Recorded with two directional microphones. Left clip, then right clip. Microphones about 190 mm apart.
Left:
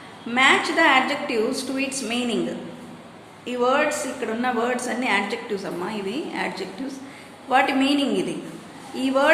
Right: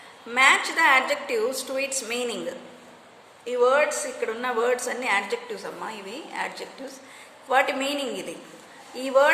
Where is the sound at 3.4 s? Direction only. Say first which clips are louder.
Even; 25° right (ahead or behind).